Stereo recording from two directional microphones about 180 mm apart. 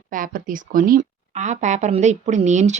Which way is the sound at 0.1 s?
50° right (ahead or behind).